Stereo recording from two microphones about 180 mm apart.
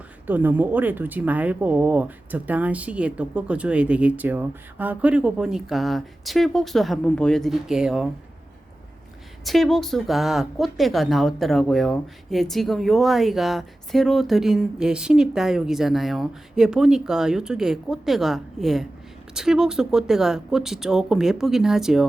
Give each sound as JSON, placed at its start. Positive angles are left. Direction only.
{"t": 0.3, "sound": "speech", "side_deg": -10}
{"t": 9.4, "sound": "speech", "side_deg": 0}